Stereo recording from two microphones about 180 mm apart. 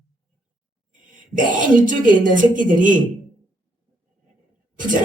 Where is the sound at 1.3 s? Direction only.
45° right (ahead or behind).